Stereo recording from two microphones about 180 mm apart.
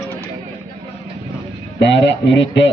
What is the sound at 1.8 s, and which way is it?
Speech, 80° left.